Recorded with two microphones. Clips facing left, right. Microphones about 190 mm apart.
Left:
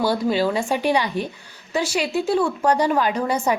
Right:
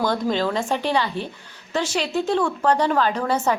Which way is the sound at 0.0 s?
10° left (ahead or behind).